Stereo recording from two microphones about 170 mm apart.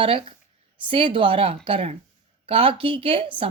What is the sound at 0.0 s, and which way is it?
Speech, 30° right (ahead or behind).